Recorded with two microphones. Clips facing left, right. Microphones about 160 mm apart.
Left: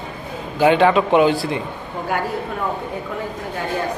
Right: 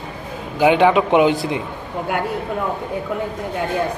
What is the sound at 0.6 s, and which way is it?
A man's voice, 15° right (ahead or behind).